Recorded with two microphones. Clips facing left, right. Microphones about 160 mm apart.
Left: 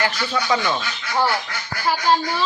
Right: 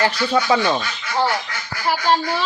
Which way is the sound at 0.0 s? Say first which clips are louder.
Right 5 dB; 30° right (ahead or behind).